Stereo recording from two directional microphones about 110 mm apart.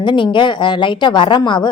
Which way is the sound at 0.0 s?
45° left (ahead or behind).